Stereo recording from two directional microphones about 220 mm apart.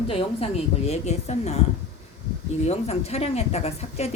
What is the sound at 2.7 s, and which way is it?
Speech, 30° left (ahead or behind).